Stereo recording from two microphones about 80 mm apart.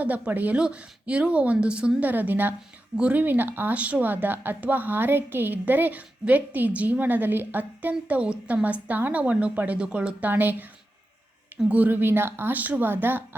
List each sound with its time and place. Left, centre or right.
0.0 s a woman's voice: right
11.7 s a woman's voice: right